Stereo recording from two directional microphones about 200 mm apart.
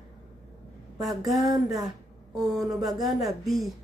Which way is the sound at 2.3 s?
Centre (ahead or behind).